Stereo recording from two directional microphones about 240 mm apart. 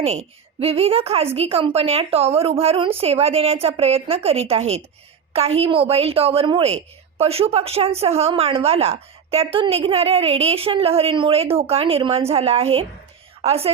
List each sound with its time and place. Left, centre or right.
0.0 s a woman's voice: right